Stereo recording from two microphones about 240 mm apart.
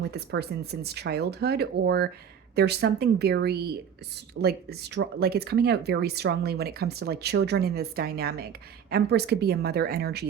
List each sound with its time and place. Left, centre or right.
0.1 s speech: right